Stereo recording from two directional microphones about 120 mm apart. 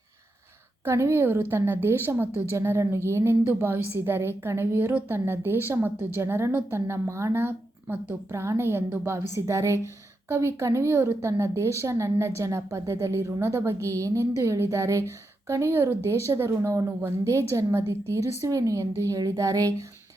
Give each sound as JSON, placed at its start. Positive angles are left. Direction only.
{"t": 0.9, "sound": "a woman's voice", "side_deg": -25}